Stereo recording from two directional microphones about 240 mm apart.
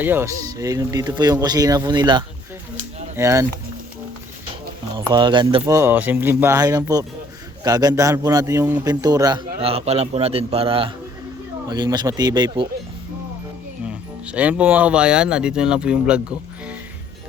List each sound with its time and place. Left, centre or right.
0.0 s speech: centre
4.9 s a man's voice: centre
13.8 s speech: centre